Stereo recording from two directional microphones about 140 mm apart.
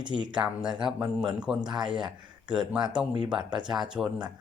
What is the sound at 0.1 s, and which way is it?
Speech, 30° right (ahead or behind).